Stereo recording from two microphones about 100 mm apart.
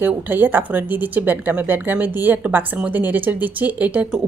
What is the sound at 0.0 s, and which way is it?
Speech, 20° right (ahead or behind).